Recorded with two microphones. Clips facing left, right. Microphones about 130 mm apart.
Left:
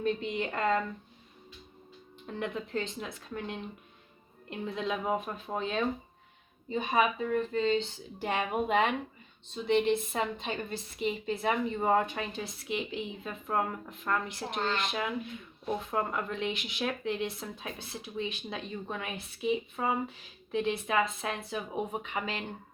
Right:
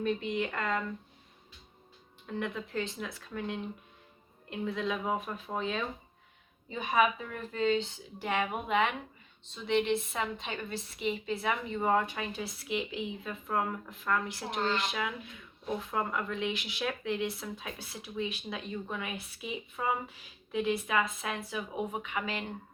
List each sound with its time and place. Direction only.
0.0 s speech: 30° left (ahead or behind)
2.2 s speech: 25° left (ahead or behind)
4.4 s a woman's voice: 30° left (ahead or behind)
12.3 s a woman's voice: 25° left (ahead or behind)